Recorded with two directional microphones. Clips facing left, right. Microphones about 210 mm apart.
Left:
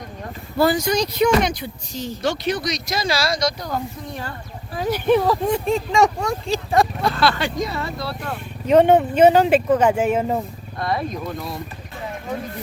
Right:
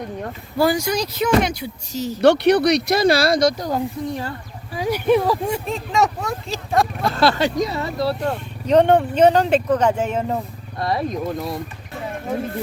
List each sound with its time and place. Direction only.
0.6 s speech: 10° right (ahead or behind)
2.2 s speech: 65° right (ahead or behind)
4.7 s speech: 10° right (ahead or behind)
7.1 s speech: 40° right (ahead or behind)
8.6 s speech: 5° left (ahead or behind)
10.8 s speech: 35° right (ahead or behind)